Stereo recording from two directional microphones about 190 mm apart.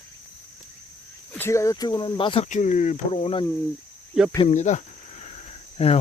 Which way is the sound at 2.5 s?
40° left (ahead or behind).